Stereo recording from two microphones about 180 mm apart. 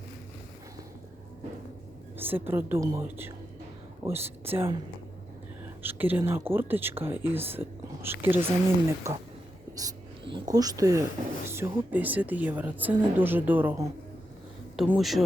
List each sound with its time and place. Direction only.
2.1 s speech: 10° right (ahead or behind)
5.8 s speech: 10° right (ahead or behind)
9.7 s dog: 25° right (ahead or behind)
10.5 s speech: 20° right (ahead or behind)
14.8 s a man's voice: centre (ahead or behind)